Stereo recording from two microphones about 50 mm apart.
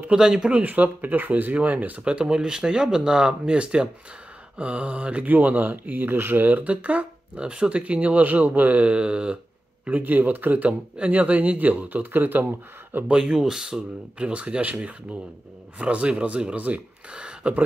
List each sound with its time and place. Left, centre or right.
0.1 s speech: centre
0.5 s speech: right
9.8 s speech: right
13.1 s speech: centre